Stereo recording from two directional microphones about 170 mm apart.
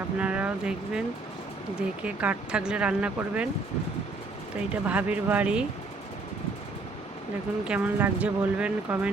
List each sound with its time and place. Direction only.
0.2 s speech: 10° right (ahead or behind)
2.0 s speech: 5° right (ahead or behind)
4.7 s speech: 10° right (ahead or behind)
7.6 s speech: 10° right (ahead or behind)